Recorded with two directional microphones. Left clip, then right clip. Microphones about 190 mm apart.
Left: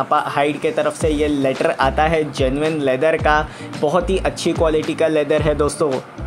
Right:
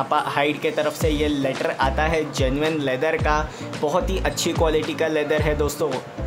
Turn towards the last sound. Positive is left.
turn(degrees=15)  # may be behind; listen again after turning